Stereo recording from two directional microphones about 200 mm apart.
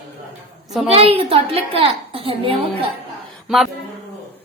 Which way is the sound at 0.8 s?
30° right (ahead or behind).